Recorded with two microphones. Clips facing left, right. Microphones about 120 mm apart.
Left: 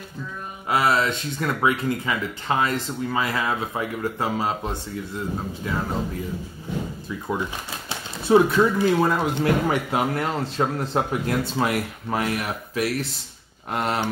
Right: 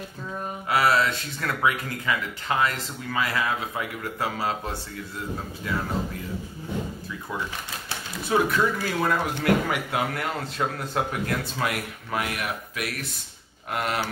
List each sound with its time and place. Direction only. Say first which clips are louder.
0.7 s speech: left 1 dB; 25° left (ahead or behind)
7.9 s speech: left 7 dB; 25° left (ahead or behind)